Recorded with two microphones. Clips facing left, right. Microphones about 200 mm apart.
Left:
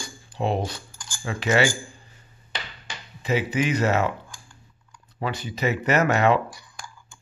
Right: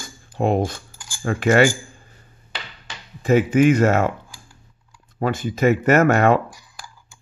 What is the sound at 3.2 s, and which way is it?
Speech, 50° right (ahead or behind).